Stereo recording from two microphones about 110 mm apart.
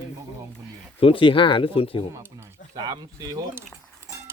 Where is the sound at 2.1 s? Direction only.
25° right (ahead or behind).